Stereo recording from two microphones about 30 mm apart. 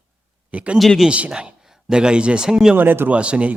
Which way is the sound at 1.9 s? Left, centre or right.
Right.